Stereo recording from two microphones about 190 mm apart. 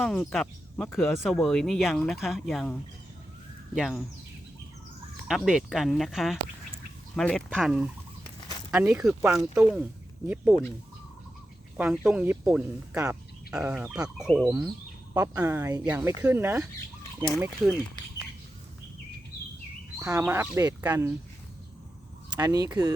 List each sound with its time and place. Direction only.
0.0 s speech: 5° left (ahead or behind)
3.8 s speech: centre (ahead or behind)
5.3 s speech: 5° right (ahead or behind)
9.0 s speech: 5° right (ahead or behind)
11.8 s speech: 5° right (ahead or behind)
20.0 s speech: 15° right (ahead or behind)
22.3 s speech: 20° right (ahead or behind)